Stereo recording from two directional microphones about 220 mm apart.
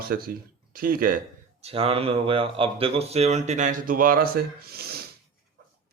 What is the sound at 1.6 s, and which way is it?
Speech, 25° right (ahead or behind).